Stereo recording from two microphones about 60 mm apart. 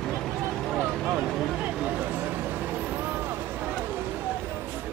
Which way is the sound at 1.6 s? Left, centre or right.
Centre.